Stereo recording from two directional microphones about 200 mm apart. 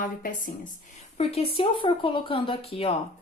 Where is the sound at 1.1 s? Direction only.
30° left (ahead or behind).